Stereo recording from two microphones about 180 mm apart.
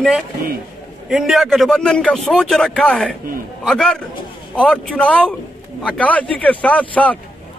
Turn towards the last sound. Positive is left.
turn(degrees=5)  # may be behind; listen again after turning